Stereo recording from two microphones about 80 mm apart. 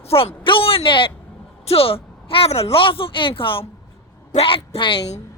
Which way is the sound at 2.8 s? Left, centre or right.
Left.